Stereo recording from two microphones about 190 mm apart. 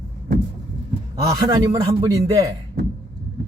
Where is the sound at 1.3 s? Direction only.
20° right (ahead or behind).